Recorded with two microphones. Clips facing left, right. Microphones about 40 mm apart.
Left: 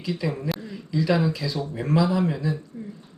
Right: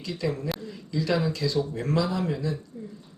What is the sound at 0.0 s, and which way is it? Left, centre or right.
Speech, centre.